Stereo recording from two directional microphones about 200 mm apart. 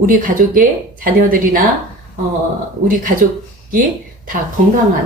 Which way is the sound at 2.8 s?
40° right (ahead or behind).